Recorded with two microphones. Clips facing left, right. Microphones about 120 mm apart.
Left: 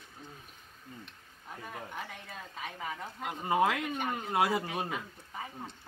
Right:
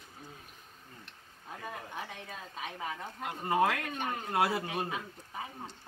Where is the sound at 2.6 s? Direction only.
15° right (ahead or behind).